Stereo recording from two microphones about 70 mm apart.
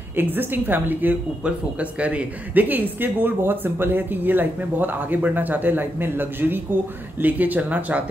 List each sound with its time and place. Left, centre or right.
0.1 s speech: right